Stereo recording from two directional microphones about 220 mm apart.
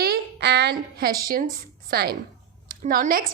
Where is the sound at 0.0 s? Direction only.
45° right (ahead or behind).